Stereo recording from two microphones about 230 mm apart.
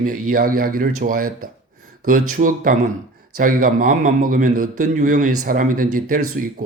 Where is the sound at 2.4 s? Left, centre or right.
Right.